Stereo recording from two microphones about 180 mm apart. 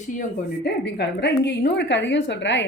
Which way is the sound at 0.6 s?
70° left (ahead or behind).